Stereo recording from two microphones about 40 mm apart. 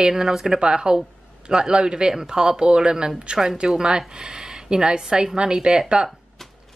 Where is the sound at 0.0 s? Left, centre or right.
Centre.